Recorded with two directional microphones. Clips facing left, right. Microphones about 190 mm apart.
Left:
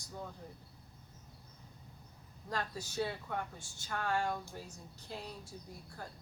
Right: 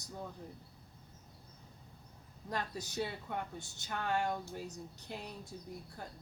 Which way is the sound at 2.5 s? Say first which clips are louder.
Even; 20° right (ahead or behind).